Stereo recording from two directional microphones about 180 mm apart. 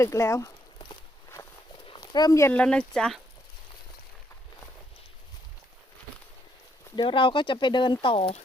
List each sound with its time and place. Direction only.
0.0 s speech: 15° left (ahead or behind)
1.9 s speech: 20° left (ahead or behind); by 3.2 s 5° left (ahead or behind)
6.9 s speech: 25° left (ahead or behind)